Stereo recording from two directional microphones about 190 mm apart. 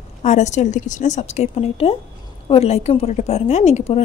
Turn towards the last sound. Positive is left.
turn(degrees=35)  # may be behind; listen again after turning